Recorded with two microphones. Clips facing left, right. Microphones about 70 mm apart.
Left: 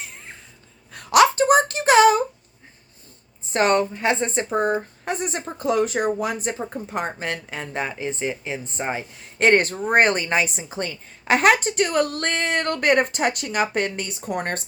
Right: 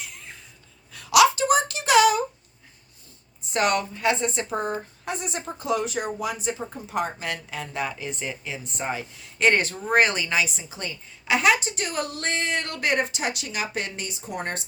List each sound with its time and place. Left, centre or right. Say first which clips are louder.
0.9 s a sound: left 2 dB; left
3.5 s speech: left 4 dB; left
4.6 s speech: left 6 dB; left
9.2 s a woman's voice: left 4 dB; left